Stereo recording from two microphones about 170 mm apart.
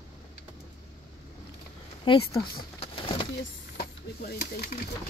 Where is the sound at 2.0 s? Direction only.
30° left (ahead or behind).